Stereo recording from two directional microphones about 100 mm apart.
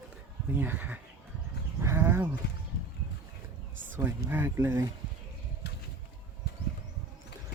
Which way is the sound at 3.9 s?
25° right (ahead or behind).